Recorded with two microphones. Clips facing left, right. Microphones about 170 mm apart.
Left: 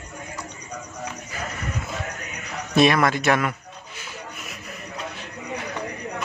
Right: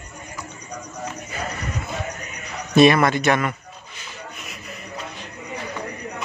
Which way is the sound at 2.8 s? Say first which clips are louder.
Right 4 dB; centre (ahead or behind).